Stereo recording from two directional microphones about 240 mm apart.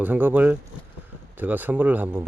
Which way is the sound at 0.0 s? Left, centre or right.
Centre.